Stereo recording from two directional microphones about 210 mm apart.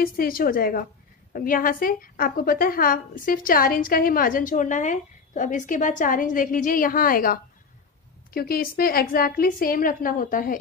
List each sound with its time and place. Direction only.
0.0 s a woman's voice: 45° left (ahead or behind)